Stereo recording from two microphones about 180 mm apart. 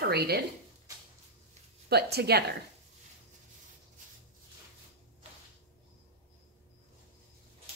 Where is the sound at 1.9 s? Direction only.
65° right (ahead or behind).